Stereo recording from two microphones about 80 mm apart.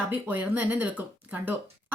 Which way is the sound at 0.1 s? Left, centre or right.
Right.